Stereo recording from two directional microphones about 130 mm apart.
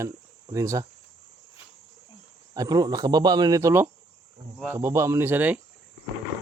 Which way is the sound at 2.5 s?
30° right (ahead or behind).